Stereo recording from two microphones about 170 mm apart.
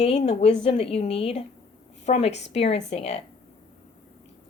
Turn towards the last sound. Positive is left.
turn(degrees=40)  # may be behind; listen again after turning